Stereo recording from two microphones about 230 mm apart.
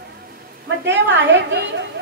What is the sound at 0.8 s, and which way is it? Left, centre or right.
Speech, right.